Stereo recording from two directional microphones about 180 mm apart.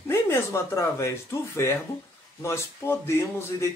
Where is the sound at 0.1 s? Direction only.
15° left (ahead or behind).